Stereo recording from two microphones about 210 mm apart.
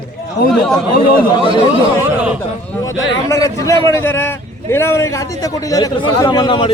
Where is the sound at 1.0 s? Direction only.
45° left (ahead or behind).